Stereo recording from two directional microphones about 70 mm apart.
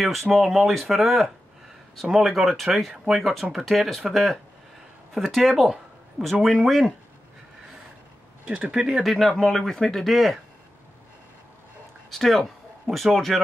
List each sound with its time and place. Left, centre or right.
0.0 s speech: centre
8.5 s speech: right
8.7 s speech: centre
9.0 s speech: centre
12.1 s speech: centre